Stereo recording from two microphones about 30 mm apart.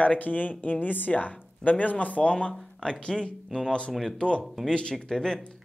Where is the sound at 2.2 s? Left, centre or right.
Left.